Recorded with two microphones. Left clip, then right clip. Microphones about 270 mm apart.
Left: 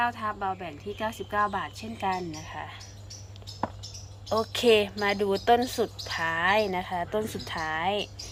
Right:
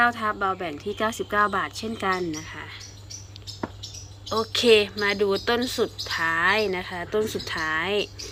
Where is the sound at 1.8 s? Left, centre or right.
Centre.